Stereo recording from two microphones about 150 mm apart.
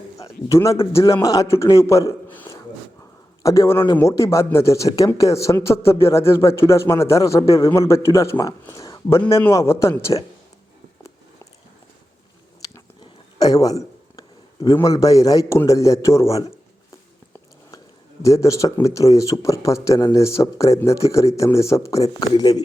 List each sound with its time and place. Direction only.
0.2 s speech: 20° left (ahead or behind)
13.0 s a man's voice: 25° left (ahead or behind)
18.2 s speech: 20° left (ahead or behind)